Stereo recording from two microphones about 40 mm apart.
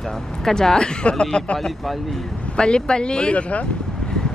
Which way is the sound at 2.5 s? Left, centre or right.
Left.